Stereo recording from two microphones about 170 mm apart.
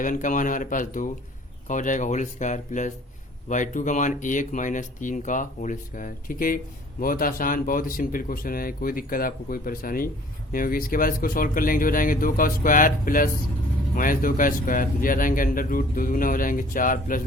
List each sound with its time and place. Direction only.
0.0 s speech: 50° left (ahead or behind)